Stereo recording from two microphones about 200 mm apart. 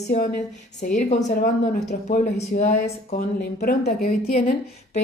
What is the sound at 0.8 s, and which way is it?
A woman's voice, 40° left (ahead or behind).